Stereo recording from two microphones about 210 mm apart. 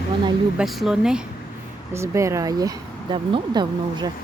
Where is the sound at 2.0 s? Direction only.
15° right (ahead or behind).